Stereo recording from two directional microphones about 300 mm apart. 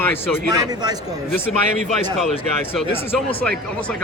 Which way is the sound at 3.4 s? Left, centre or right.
Centre.